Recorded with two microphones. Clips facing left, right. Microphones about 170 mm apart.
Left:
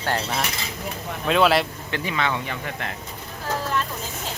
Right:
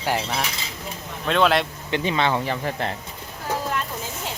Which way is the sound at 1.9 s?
25° right (ahead or behind).